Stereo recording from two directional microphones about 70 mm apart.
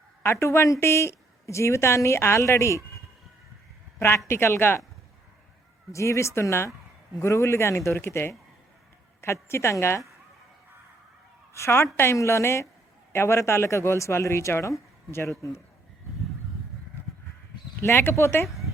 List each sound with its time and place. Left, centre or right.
0.2 s a woman's voice: left
4.3 s speech: left
5.9 s a woman's voice: left
11.5 s speech: left
17.8 s speech: left